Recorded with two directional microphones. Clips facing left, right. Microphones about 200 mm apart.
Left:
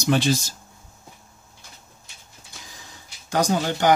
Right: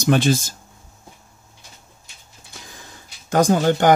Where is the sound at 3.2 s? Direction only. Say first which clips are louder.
Right 6 dB; 50° right (ahead or behind).